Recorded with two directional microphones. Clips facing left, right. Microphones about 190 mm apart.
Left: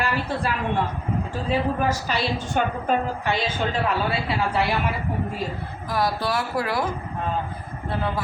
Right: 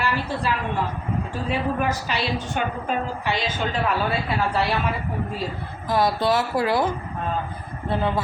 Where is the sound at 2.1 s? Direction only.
45° left (ahead or behind).